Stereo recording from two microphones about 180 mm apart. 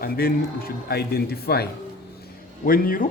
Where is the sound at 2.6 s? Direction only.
50° left (ahead or behind).